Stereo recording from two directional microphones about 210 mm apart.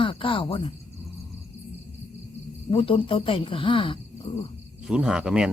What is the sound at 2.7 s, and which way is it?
Speech, 25° left (ahead or behind).